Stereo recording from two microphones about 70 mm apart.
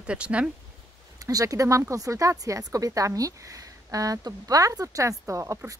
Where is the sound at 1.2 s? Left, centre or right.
Right.